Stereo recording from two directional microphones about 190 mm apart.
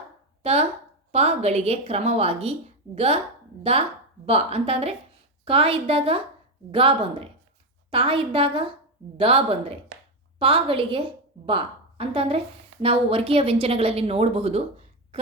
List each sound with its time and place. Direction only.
0.4 s a woman's voice: 35° right (ahead or behind)